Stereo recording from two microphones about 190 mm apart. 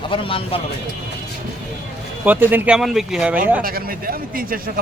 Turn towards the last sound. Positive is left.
turn(degrees=-50)  # may be behind; listen again after turning